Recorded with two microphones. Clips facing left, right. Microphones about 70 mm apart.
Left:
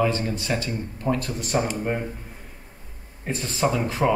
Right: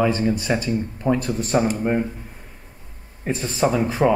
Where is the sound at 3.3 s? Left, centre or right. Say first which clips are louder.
Right 3 dB; right.